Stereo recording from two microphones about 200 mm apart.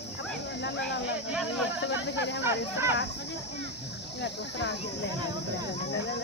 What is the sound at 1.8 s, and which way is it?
Speech, 60° left (ahead or behind).